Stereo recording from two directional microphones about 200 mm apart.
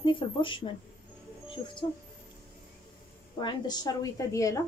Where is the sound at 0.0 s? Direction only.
25° left (ahead or behind).